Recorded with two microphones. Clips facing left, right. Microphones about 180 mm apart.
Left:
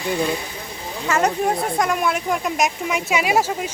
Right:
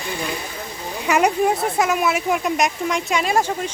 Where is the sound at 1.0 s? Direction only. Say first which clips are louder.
Right 2 dB; 15° right (ahead or behind).